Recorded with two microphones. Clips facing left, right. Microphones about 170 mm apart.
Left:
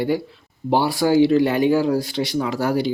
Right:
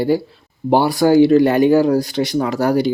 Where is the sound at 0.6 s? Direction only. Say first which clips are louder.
Right 5 dB; 50° right (ahead or behind).